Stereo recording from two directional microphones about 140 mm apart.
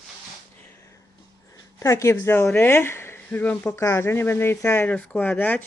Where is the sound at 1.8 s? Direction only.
20° left (ahead or behind).